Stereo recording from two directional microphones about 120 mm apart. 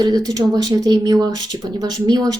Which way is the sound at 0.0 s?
30° right (ahead or behind).